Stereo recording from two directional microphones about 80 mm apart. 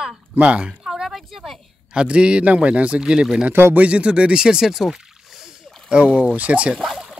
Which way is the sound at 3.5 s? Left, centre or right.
Right.